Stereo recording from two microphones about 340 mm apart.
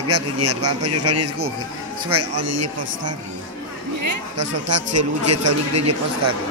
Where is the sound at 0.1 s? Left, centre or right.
Right.